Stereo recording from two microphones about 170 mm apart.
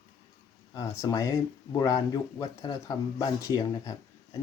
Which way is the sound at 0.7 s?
20° left (ahead or behind).